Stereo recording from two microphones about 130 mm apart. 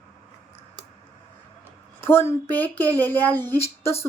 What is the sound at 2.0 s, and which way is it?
A woman's voice, 20° left (ahead or behind).